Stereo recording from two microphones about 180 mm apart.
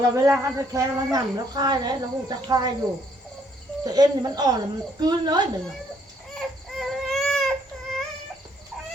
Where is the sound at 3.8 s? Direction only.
20° right (ahead or behind).